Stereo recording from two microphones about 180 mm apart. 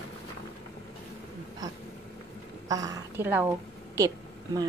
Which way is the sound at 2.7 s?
20° right (ahead or behind).